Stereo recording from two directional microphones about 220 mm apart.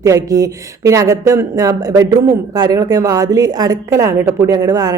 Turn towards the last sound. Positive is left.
turn(degrees=-15)  # may be behind; listen again after turning